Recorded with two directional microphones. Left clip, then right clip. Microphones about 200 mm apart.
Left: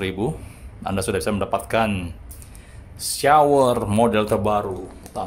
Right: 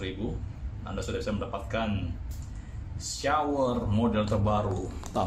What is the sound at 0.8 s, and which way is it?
Speech, 60° left (ahead or behind).